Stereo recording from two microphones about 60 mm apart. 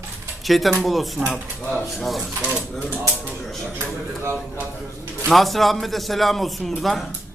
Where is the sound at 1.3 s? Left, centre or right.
Centre.